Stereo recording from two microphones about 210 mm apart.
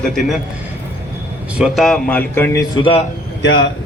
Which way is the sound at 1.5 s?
Centre (ahead or behind).